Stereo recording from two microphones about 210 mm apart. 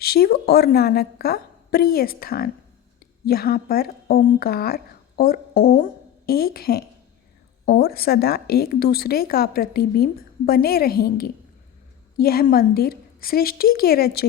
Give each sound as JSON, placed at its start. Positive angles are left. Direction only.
{"t": 0.0, "sound": "a woman's voice", "side_deg": 45}